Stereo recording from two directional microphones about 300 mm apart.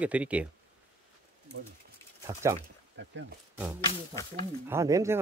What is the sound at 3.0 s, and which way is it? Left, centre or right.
Speech, right.